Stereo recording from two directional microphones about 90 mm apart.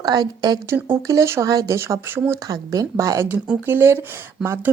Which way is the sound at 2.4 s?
45° right (ahead or behind).